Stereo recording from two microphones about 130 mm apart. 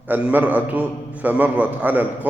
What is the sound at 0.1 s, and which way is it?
A man's voice, 10° right (ahead or behind).